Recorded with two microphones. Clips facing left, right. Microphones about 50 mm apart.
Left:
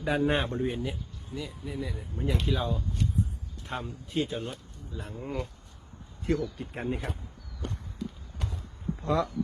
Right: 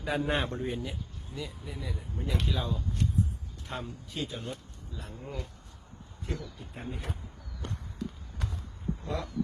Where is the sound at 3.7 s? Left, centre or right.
Left.